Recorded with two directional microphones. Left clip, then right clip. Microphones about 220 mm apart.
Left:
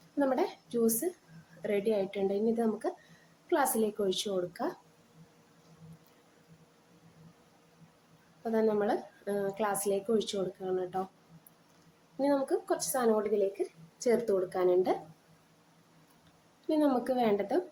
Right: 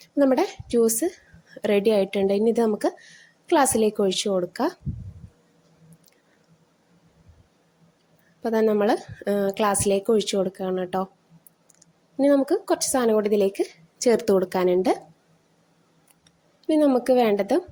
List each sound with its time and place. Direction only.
0.2 s speech: 35° right (ahead or behind)
8.4 s speech: 40° right (ahead or behind)
12.1 s speech: 35° right (ahead or behind)
16.6 s speech: 35° right (ahead or behind)